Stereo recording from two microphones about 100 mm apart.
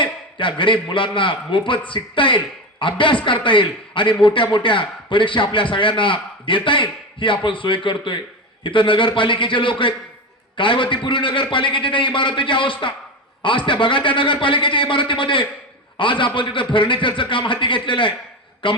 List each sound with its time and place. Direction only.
0.0 s a man's voice: 55° left (ahead or behind)